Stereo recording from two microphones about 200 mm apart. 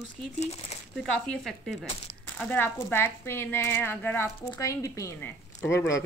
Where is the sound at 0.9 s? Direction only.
Centre (ahead or behind).